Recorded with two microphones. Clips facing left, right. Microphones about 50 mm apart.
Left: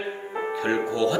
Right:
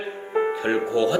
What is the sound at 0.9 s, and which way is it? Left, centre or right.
Speech, right.